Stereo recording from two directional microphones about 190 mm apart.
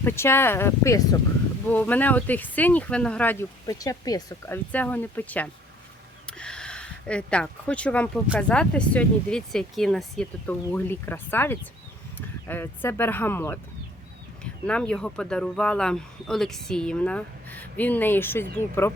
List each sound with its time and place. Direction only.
0.0 s speech: 10° left (ahead or behind)
14.7 s speech: 5° left (ahead or behind)